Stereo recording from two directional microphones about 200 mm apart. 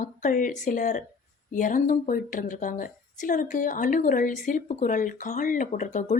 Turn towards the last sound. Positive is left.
turn(degrees=40)  # may be behind; listen again after turning